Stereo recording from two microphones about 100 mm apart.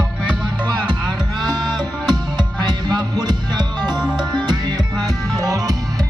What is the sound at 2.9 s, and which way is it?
Music, 40° right (ahead or behind).